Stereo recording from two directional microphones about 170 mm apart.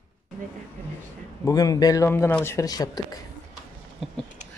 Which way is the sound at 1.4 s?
20° left (ahead or behind).